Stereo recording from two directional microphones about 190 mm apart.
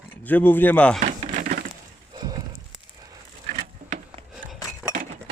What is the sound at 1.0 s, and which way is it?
Typewriter, 45° right (ahead or behind).